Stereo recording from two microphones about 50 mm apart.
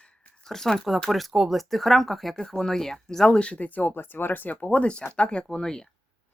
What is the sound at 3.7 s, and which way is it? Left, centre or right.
Speech, left.